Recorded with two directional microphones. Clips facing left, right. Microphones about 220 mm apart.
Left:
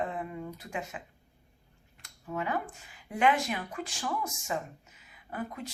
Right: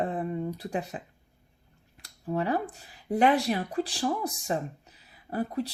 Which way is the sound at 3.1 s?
35° right (ahead or behind).